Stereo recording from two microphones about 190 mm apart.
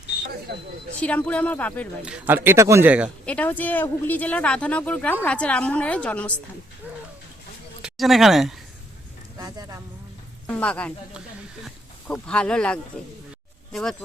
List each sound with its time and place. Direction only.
0.5 s speech: 55° right (ahead or behind)
1.0 s speech: 5° left (ahead or behind)
2.0 s speech: 5° right (ahead or behind)
3.2 s speech: 10° left (ahead or behind)
7.8 s speech: centre (ahead or behind)
9.4 s a sound: 20° right (ahead or behind)
10.4 s speech: 5° left (ahead or behind)